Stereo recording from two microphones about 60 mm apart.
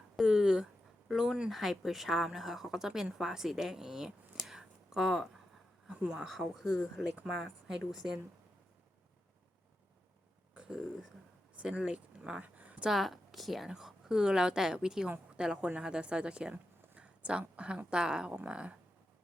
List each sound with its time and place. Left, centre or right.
0.2 s a sound: centre
1.5 s speech: centre
4.5 s a sound: centre
6.2 s speech: centre
10.5 s throat clearing: centre
11.5 s a woman's voice: centre
12.9 s speech: centre